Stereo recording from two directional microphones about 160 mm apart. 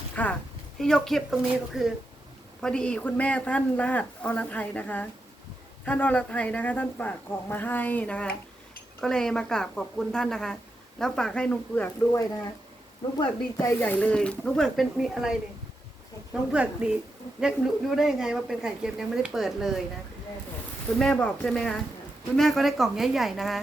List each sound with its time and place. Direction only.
0.2 s a man's voice: 10° left (ahead or behind)
13.1 s speech: 25° left (ahead or behind)
13.7 s a woman's voice: 10° left (ahead or behind)
21.0 s a woman's voice: 5° left (ahead or behind)